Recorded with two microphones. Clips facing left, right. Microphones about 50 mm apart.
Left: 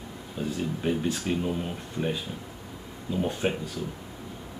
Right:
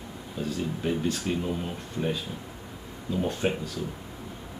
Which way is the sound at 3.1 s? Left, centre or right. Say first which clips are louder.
Even; centre.